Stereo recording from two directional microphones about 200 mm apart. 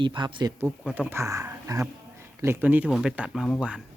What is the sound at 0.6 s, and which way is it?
Speech, 5° right (ahead or behind).